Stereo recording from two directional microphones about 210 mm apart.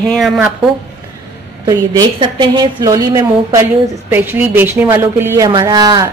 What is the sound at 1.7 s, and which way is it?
Speech, 20° right (ahead or behind).